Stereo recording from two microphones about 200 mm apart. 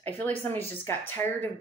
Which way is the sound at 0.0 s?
10° left (ahead or behind).